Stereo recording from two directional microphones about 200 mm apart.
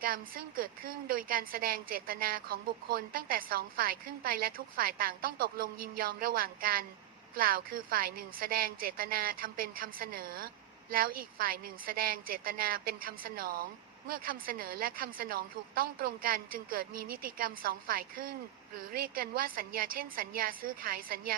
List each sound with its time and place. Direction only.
0.0 s a woman's voice: 45° right (ahead or behind)